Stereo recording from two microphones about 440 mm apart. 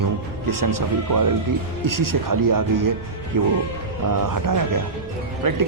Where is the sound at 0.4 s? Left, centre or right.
Right.